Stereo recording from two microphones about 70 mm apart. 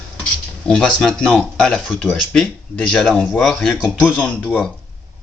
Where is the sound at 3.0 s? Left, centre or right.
Centre.